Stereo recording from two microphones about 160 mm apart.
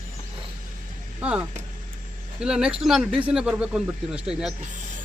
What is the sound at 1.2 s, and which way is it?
Speech, 5° right (ahead or behind).